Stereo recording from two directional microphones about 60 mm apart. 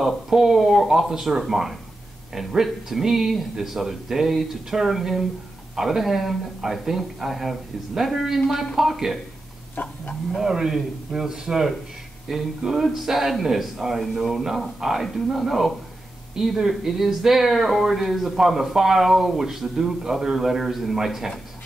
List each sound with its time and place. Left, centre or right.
0.0 s speech: centre
9.8 s livestock: left
10.3 s a man's voice: centre